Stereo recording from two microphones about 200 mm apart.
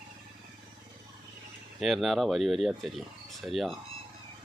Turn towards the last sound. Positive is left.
turn(degrees=0)  # may be behind; listen again after turning